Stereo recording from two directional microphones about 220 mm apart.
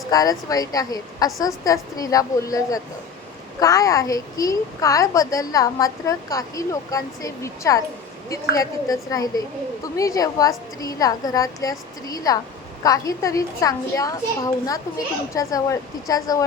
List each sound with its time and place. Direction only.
0.1 s a woman's voice: 15° left (ahead or behind)